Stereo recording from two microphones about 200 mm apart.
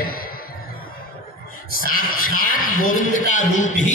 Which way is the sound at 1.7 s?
45° left (ahead or behind).